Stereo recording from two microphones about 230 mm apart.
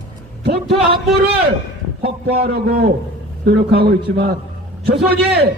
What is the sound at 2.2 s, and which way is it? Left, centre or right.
A man's voice, right.